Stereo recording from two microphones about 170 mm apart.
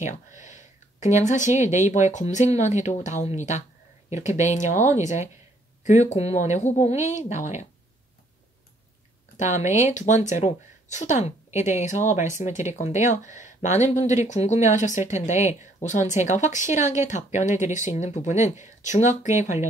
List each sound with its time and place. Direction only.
0.4 s speech: 45° left (ahead or behind)
9.4 s speech: 45° left (ahead or behind)